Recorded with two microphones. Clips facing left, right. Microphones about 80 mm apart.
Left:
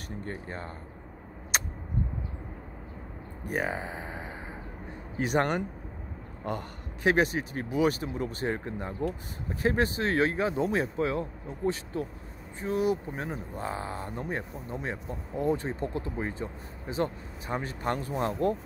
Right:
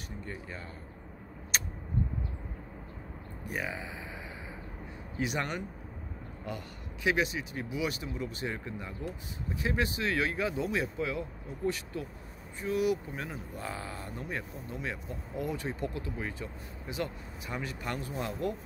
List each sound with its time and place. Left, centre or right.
0.2 s speech: left
3.4 s speech: left